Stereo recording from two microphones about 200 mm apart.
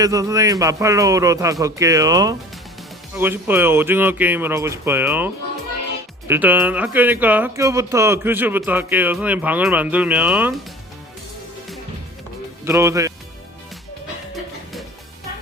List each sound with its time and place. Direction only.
0.0 s speech: 15° right (ahead or behind)
12.6 s speech: 15° right (ahead or behind)